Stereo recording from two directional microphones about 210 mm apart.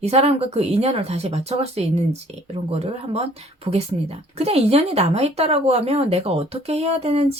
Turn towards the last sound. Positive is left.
turn(degrees=-30)  # may be behind; listen again after turning